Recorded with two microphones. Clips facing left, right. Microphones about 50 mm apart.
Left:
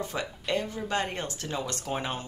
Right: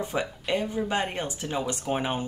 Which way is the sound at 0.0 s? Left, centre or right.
Centre.